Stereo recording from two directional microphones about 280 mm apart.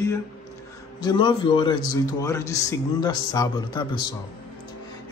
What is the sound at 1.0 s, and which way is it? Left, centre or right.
A man's voice, centre.